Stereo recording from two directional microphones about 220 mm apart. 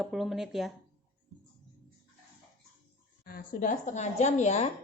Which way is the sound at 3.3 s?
40° left (ahead or behind).